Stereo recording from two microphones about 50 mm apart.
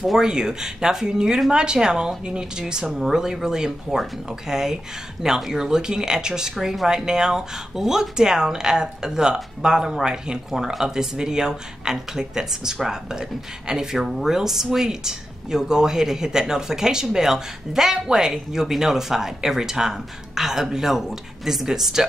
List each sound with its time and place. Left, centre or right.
0.0 s a woman's voice: centre
2.9 s a woman's voice: centre